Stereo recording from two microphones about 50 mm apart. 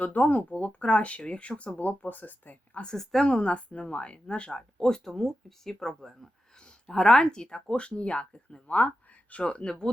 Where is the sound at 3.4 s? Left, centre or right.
Left; by 6.5 s centre.